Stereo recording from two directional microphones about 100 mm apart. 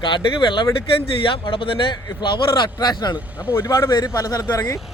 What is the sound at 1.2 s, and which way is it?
Speech, 60° left (ahead or behind).